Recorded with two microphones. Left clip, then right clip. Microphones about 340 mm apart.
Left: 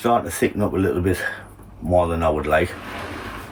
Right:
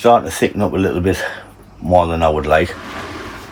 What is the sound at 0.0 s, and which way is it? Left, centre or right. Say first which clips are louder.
Speech: right 7 dB; centre.